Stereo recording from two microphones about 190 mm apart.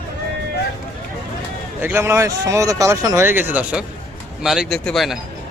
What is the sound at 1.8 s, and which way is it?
A man's voice, 10° right (ahead or behind).